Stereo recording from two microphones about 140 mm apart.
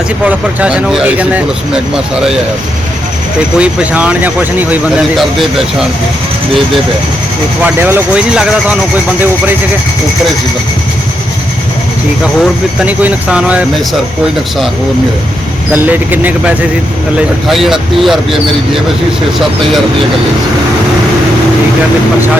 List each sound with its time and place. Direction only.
0.3 s speech: 10° right (ahead or behind)
3.6 s speech: 10° right (ahead or behind)
5.1 s speech: centre (ahead or behind)
7.6 s speech: 15° right (ahead or behind)
8.4 s speech: 5° right (ahead or behind)
12.2 s speech: 10° right (ahead or behind)
15.7 s speech: 10° right (ahead or behind)
17.2 s speech: centre (ahead or behind)